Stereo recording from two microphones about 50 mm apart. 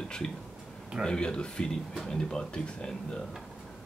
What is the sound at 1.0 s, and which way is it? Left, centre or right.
Speech, centre.